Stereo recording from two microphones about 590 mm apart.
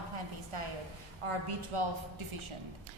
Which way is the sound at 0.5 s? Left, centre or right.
Right.